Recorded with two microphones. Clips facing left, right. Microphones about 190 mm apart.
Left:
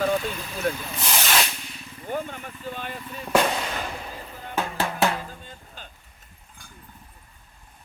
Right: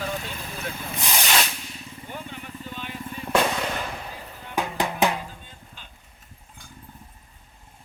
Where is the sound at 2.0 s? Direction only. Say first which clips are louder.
Left 8 dB; 45° left (ahead or behind).